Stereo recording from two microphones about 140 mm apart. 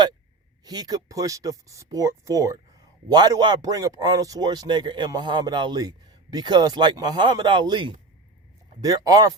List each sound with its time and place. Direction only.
0.6 s speech: 30° right (ahead or behind)